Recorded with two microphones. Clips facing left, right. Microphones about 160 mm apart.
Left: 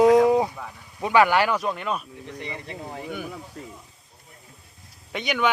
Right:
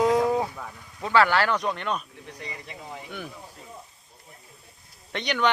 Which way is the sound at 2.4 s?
30° left (ahead or behind).